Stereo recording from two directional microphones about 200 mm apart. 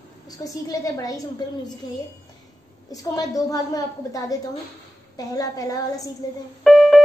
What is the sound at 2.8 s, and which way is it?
A woman's voice, 20° left (ahead or behind).